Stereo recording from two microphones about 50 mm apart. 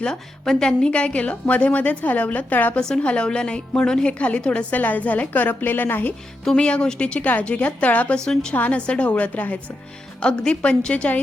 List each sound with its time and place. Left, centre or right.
0.0 s a woman's voice: centre; by 2.7 s left
2.8 s a woman's voice: left
6.6 s a woman's voice: centre
8.1 s a woman's voice: centre
8.5 s a woman's voice: left
10.2 s a woman's voice: centre